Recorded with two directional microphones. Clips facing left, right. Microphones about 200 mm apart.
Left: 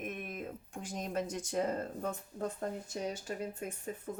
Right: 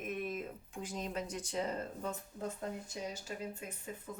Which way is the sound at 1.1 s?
50° left (ahead or behind).